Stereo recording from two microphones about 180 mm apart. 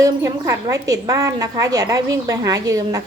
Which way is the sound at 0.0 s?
20° right (ahead or behind).